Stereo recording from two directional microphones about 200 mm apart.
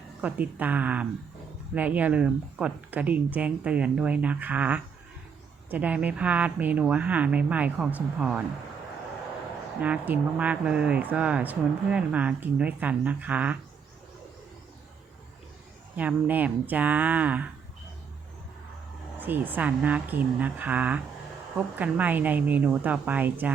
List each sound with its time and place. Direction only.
0.2 s speech: 10° right (ahead or behind)
9.8 s speech: 5° right (ahead or behind)
16.0 s speech: 10° right (ahead or behind)
19.2 s speech: 10° right (ahead or behind)